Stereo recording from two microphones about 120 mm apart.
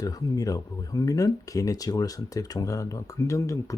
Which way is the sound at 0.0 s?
30° left (ahead or behind).